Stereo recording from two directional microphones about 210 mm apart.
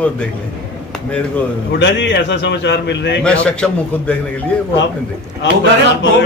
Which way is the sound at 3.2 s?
5° left (ahead or behind).